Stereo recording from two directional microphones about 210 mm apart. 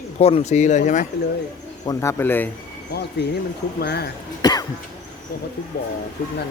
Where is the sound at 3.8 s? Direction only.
50° left (ahead or behind).